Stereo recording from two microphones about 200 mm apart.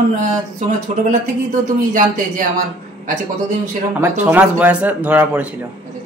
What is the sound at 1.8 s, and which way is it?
Speech, 45° right (ahead or behind).